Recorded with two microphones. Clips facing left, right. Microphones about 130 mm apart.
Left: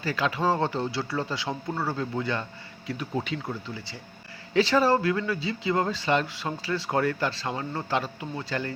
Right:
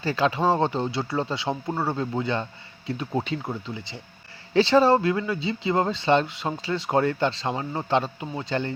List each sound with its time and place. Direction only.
0.0 s speech: 30° right (ahead or behind)